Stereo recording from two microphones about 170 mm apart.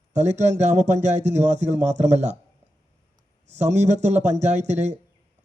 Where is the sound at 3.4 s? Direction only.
40° right (ahead or behind).